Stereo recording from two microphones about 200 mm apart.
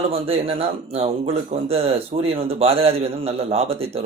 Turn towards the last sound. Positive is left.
turn(degrees=-30)  # may be behind; listen again after turning